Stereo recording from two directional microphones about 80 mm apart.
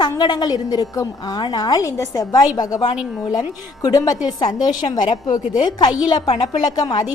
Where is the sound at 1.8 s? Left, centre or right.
Left.